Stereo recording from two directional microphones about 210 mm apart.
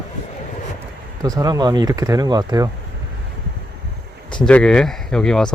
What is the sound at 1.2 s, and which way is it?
Speech, 15° right (ahead or behind).